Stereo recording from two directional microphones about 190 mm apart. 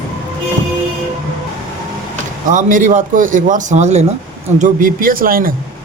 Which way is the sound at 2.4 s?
45° right (ahead or behind).